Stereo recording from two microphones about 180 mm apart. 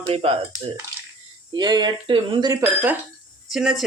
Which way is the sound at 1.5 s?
25° right (ahead or behind).